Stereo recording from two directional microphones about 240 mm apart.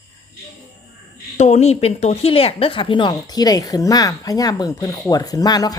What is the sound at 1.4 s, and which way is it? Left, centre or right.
Speech, left.